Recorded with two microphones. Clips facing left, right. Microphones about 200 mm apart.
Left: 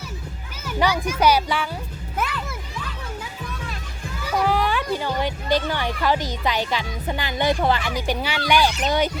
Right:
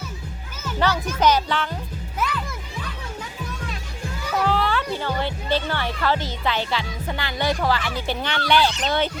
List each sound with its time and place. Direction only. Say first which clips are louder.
0.6 s speech: left 1 dB; 10° left (ahead or behind)
2.2 s music: even; 55° left (ahead or behind)
4.4 s speech: left 1 dB; 15° left (ahead or behind)